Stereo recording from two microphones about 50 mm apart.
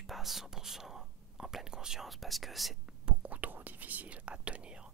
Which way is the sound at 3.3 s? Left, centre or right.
Right.